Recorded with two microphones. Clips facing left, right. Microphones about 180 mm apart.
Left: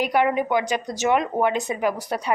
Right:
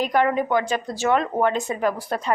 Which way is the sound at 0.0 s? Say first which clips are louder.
Even; 10° left (ahead or behind).